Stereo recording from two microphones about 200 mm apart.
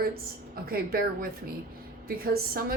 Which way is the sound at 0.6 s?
50° right (ahead or behind).